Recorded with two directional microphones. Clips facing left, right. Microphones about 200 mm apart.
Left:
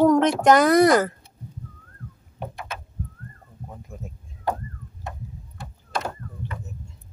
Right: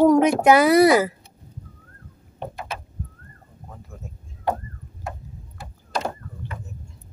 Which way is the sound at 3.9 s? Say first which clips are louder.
Left 3 dB; 15° left (ahead or behind).